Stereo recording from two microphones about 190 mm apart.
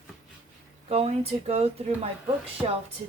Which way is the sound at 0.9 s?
30° right (ahead or behind).